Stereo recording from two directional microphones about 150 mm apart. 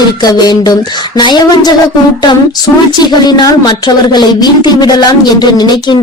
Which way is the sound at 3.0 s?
25° left (ahead or behind).